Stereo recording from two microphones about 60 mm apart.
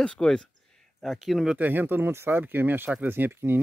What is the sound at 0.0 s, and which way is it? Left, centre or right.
Speech, centre.